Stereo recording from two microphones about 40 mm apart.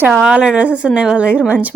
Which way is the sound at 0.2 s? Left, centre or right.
Right.